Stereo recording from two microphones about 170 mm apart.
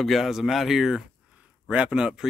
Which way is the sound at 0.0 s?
Centre (ahead or behind).